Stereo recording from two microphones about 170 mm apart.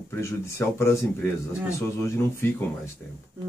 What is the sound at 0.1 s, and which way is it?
Speech, 15° left (ahead or behind).